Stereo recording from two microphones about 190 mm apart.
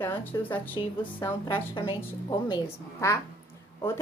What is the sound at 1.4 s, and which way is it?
A woman's voice, 25° left (ahead or behind).